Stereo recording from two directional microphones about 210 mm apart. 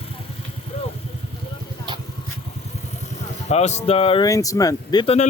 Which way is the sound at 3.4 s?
30° left (ahead or behind).